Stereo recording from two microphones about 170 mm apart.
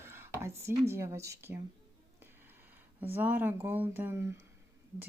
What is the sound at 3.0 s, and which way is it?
Speech, 10° right (ahead or behind).